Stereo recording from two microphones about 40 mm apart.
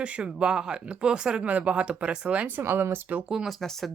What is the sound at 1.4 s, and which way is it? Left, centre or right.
Speech, right.